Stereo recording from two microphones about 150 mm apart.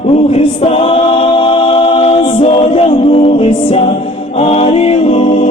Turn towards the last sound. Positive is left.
turn(degrees=40)  # may be behind; listen again after turning